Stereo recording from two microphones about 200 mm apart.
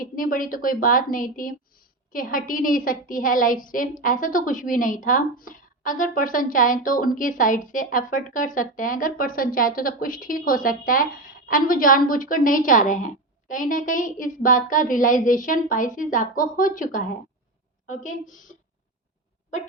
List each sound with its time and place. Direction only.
0.0 s a woman's voice: 45° left (ahead or behind)